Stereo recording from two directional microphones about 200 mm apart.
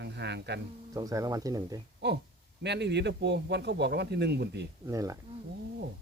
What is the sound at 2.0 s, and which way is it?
A man's voice, 55° right (ahead or behind).